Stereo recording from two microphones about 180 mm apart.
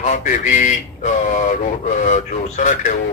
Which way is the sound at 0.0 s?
45° left (ahead or behind).